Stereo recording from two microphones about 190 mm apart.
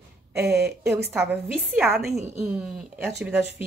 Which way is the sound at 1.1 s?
10° right (ahead or behind).